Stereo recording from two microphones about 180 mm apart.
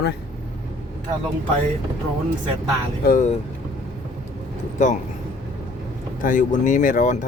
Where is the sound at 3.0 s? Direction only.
50° left (ahead or behind).